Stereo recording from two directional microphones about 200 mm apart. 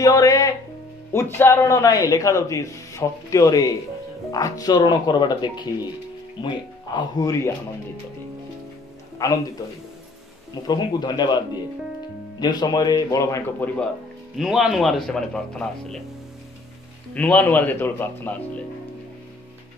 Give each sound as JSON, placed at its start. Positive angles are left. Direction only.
{"t": 0.0, "sound": "music", "side_deg": 20}
{"t": 1.1, "sound": "a man's voice", "side_deg": 15}
{"t": 9.2, "sound": "a man's voice", "side_deg": 15}
{"t": 10.7, "sound": "speech", "side_deg": 20}
{"t": 14.3, "sound": "speech", "side_deg": 0}
{"t": 17.1, "sound": "a man's voice", "side_deg": 5}